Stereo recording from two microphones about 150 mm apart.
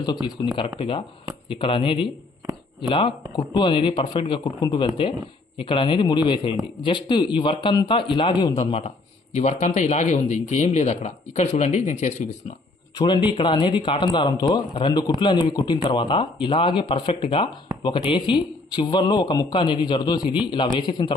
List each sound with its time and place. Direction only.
0.0 s speech: 30° left (ahead or behind)
0.8 s speech: 40° left (ahead or behind)
3.3 s speech: 30° left (ahead or behind)
8.6 s speech: 45° left (ahead or behind)
13.0 s speech: 30° left (ahead or behind)